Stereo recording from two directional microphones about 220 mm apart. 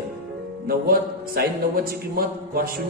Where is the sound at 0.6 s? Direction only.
45° right (ahead or behind).